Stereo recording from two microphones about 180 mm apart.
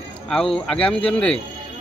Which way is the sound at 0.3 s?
5° left (ahead or behind).